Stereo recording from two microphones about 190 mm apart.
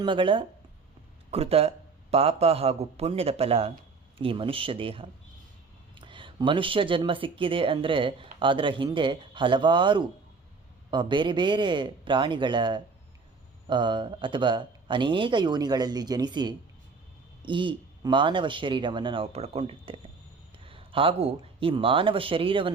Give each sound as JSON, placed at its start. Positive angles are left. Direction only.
{"t": 0.0, "sound": "a man's voice", "side_deg": -25}